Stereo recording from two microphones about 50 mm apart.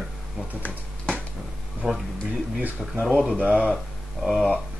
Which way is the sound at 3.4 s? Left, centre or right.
Right.